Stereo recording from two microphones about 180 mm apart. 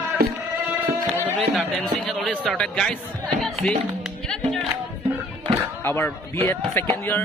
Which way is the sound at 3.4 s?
5° left (ahead or behind).